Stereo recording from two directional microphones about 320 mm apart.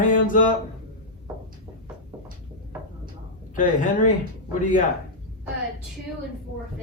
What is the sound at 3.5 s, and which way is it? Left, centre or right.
Speech, left.